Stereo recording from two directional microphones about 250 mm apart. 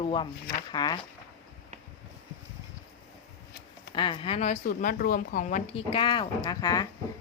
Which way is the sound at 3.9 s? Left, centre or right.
Centre.